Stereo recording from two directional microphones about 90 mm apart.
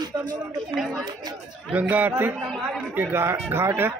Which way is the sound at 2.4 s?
Centre (ahead or behind).